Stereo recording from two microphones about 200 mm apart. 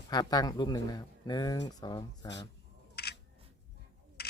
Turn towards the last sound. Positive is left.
turn(degrees=50)  # may be behind; listen again after turning